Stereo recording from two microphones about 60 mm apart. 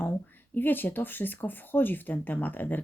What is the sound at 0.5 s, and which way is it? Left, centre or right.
Speech, left.